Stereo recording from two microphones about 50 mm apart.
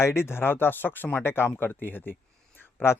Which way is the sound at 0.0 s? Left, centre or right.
Left.